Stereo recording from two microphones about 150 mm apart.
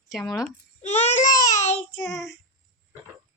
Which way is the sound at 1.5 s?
50° left (ahead or behind).